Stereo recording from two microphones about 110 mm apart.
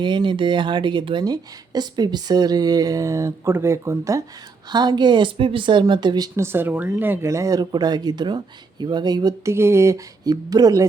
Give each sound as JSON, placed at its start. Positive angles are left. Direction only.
{"t": 0.0, "sound": "speech", "side_deg": -45}
{"t": 4.7, "sound": "a woman's voice", "side_deg": -40}
{"t": 6.4, "sound": "speech", "side_deg": -20}
{"t": 9.4, "sound": "speech", "side_deg": -25}